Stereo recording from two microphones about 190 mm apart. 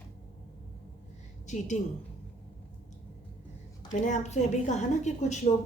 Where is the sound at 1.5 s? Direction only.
40° left (ahead or behind).